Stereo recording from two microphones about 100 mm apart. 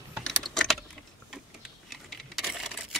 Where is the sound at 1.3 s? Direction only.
Centre (ahead or behind).